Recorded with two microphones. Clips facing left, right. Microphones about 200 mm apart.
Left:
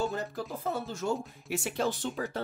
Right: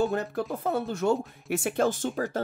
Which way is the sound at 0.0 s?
60° right (ahead or behind).